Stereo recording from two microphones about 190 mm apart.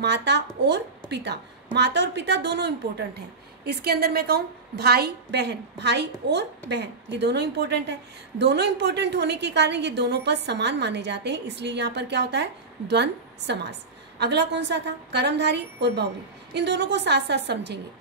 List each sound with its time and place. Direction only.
0.0 s a woman's voice: 65° right (ahead or behind)